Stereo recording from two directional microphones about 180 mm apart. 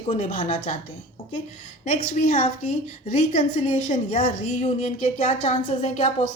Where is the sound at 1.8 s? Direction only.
45° left (ahead or behind).